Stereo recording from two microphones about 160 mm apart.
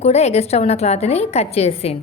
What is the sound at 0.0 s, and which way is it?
A woman's voice, 40° left (ahead or behind).